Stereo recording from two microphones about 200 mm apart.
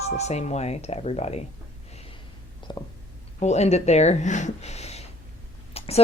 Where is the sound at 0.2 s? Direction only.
35° left (ahead or behind).